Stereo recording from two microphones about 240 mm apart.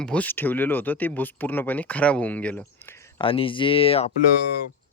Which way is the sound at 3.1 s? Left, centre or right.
Left.